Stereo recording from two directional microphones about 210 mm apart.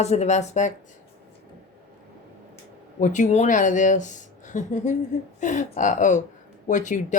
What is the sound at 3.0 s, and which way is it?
Speech, 35° left (ahead or behind).